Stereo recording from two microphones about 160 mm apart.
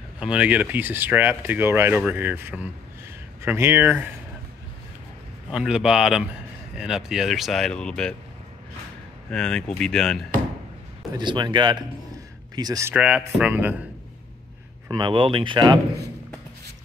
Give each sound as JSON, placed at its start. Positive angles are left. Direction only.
{"t": 0.2, "sound": "speech", "side_deg": -5}
{"t": 5.5, "sound": "speech", "side_deg": -5}
{"t": 9.3, "sound": "speech", "side_deg": 5}
{"t": 11.1, "sound": "speech", "side_deg": -25}
{"t": 12.9, "sound": "speech", "side_deg": -10}
{"t": 14.9, "sound": "speech", "side_deg": -30}